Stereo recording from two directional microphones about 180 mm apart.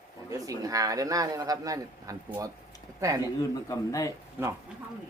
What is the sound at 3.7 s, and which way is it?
Speech, 20° left (ahead or behind).